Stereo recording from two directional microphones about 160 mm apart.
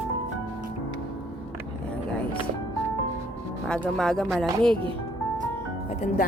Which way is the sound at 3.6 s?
5° left (ahead or behind).